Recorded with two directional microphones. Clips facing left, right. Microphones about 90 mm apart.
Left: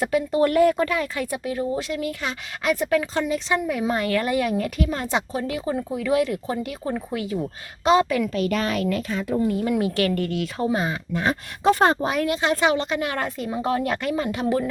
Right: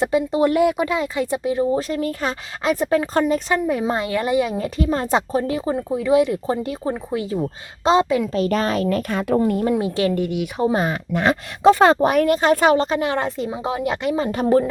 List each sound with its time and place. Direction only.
0.0 s a woman's voice: 25° right (ahead or behind)
1.9 s a woman's voice: 40° right (ahead or behind)
9.0 s speech: 55° right (ahead or behind)
9.4 s speech: 45° right (ahead or behind)
9.6 s a woman's voice: 25° right (ahead or behind)
10.8 s speech: 75° right (ahead or behind)
11.9 s a woman's voice: 55° right (ahead or behind); by 14.7 s 30° right (ahead or behind)